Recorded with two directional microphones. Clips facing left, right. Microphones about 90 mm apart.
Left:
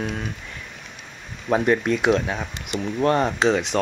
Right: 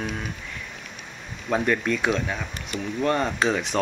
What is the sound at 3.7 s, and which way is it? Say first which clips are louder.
Speech: left 2 dB; 15° right (ahead or behind).